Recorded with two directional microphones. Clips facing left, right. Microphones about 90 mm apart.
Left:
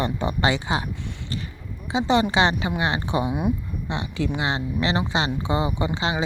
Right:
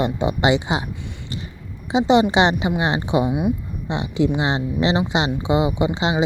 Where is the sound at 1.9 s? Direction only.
20° right (ahead or behind).